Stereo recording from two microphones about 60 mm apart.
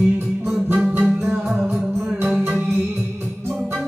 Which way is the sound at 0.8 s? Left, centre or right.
Right.